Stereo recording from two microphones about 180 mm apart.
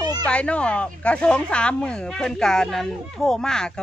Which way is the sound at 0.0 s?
20° right (ahead or behind).